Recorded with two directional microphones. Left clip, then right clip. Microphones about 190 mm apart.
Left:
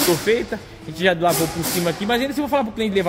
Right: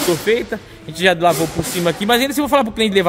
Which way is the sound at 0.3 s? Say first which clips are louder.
Right 3 dB; 15° right (ahead or behind).